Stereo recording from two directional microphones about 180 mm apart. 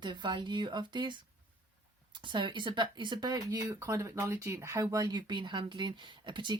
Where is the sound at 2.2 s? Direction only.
25° right (ahead or behind).